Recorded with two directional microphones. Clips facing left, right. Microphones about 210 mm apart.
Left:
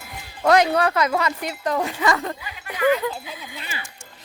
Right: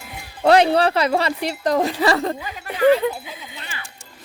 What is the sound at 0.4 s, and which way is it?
A woman's voice, 30° right (ahead or behind).